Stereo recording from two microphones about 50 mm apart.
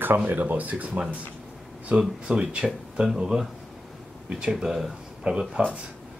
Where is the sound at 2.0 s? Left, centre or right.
Centre.